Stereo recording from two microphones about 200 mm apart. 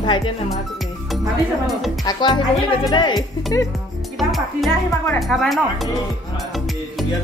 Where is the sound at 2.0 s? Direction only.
20° left (ahead or behind).